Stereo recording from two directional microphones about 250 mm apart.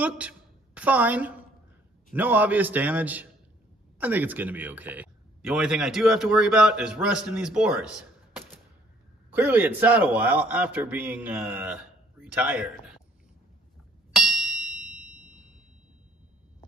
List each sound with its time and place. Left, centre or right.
0.0 s a woman's voice: centre
14.1 s ding: centre